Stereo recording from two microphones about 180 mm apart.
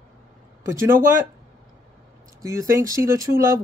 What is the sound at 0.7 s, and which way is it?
Speech, 15° right (ahead or behind).